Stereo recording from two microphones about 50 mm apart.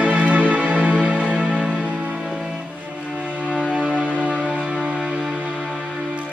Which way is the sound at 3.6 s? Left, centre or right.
Right.